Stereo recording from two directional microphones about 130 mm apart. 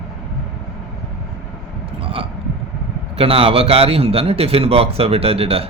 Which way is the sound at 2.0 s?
45° right (ahead or behind).